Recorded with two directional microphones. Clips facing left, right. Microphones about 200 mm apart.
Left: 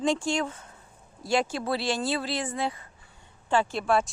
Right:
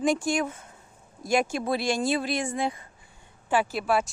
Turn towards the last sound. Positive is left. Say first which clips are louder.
# even
turn(degrees=-5)  # may be behind; listen again after turning